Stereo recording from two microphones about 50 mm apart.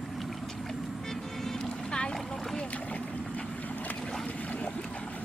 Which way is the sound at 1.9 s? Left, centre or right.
Centre.